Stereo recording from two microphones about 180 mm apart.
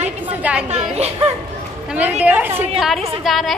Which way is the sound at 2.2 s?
10° right (ahead or behind).